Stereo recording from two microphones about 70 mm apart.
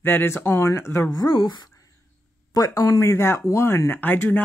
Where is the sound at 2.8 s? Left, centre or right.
Left.